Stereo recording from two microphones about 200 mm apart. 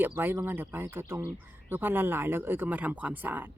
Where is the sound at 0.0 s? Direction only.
10° right (ahead or behind).